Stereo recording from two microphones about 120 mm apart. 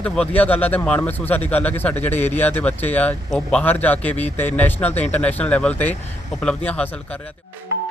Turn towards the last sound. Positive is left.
turn(degrees=10)  # may be behind; listen again after turning